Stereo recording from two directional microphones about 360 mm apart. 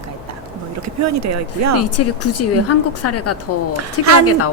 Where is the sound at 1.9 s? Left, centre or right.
Left.